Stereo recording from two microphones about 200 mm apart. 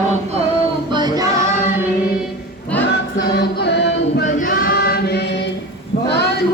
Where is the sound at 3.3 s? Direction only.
55° left (ahead or behind).